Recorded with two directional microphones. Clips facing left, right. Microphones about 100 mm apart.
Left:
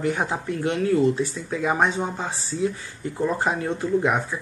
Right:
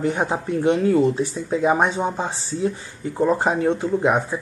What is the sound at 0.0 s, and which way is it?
Speech, 25° right (ahead or behind).